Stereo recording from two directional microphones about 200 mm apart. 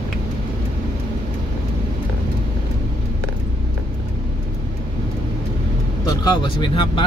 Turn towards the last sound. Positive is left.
turn(degrees=25)  # may be behind; listen again after turning